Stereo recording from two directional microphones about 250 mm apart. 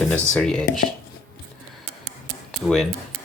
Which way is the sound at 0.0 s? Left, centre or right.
Centre.